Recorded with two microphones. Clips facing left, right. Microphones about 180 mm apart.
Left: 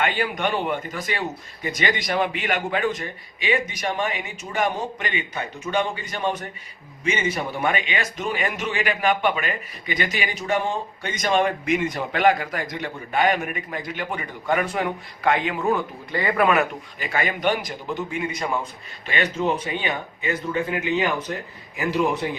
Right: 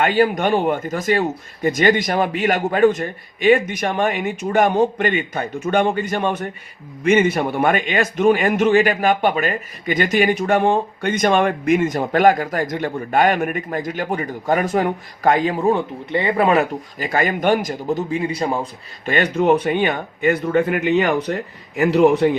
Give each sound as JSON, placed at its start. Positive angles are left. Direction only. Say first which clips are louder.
{"t": 0.0, "sound": "a man's voice", "louder": "right 7 dB", "side_deg": -40}
{"t": 19.1, "sound": "speech", "louder": "right 7 dB", "side_deg": -65}